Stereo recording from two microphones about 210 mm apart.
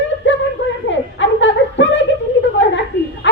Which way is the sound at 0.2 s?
60° left (ahead or behind).